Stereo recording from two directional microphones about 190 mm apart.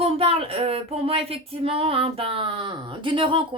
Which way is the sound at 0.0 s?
30° right (ahead or behind).